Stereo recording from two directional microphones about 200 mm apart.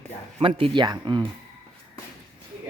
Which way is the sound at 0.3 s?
25° right (ahead or behind).